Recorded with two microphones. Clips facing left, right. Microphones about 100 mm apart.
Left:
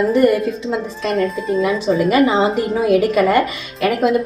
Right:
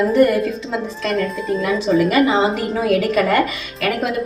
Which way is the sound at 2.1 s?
30° left (ahead or behind).